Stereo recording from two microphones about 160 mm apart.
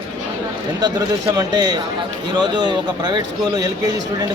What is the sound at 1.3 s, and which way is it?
A man's voice, 25° right (ahead or behind).